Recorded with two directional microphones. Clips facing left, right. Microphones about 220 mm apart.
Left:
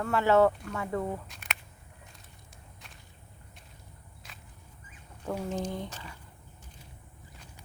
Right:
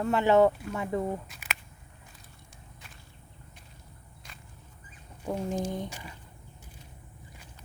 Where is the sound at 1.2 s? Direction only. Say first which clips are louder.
Even; 5° right (ahead or behind).